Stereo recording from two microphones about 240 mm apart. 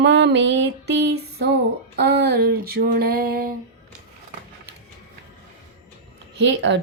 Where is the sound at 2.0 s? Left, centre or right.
Right.